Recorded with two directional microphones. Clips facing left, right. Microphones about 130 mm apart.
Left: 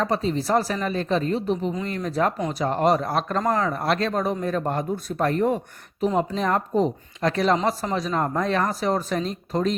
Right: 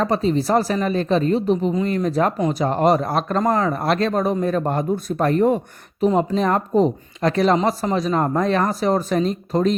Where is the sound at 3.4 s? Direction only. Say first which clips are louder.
Right 4 dB; 25° right (ahead or behind).